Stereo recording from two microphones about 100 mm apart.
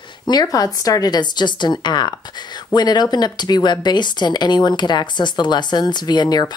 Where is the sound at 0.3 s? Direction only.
40° left (ahead or behind).